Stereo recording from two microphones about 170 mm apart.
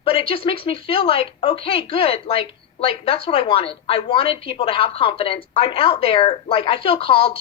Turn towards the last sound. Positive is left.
turn(degrees=35)  # may be behind; listen again after turning